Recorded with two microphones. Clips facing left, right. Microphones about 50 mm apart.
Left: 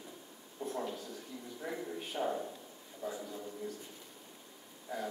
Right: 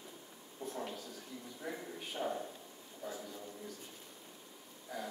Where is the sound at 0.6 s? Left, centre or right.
Left.